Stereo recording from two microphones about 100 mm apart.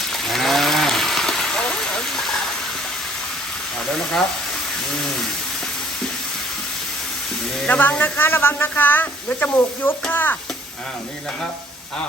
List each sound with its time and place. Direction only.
0.1 s a sound: centre (ahead or behind)
3.9 s speech: 5° left (ahead or behind)
7.7 s speech: 20° left (ahead or behind)